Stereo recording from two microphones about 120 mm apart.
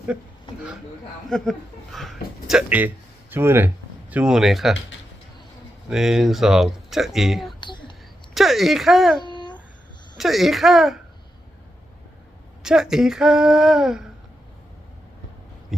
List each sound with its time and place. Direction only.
1.3 s a man's voice: centre (ahead or behind); by 3.7 s 20° right (ahead or behind)
4.1 s speech: 5° right (ahead or behind)
5.9 s speech: 5° right (ahead or behind)
7.6 s whispering: 40° left (ahead or behind)
8.4 s speech: centre (ahead or behind)
9.2 s a sound: 40° left (ahead or behind)
10.2 s speech: centre (ahead or behind)
12.6 s speech: 5° right (ahead or behind)